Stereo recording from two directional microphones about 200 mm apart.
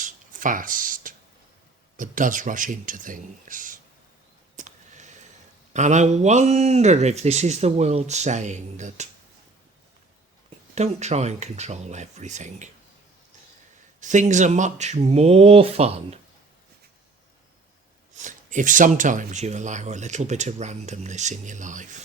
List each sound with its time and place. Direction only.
0.0 s a sound: 40° right (ahead or behind)
2.0 s speech: 40° right (ahead or behind)
4.5 s a sound: 40° right (ahead or behind)
5.7 s speech: 35° right (ahead or behind)
10.8 s speech: 35° right (ahead or behind)
14.0 s speech: 40° right (ahead or behind)
18.2 s speech: 40° right (ahead or behind)